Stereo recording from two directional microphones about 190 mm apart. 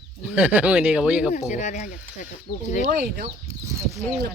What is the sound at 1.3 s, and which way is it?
Speech, 40° left (ahead or behind).